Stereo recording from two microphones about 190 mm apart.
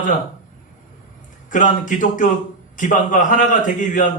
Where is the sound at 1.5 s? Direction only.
45° left (ahead or behind).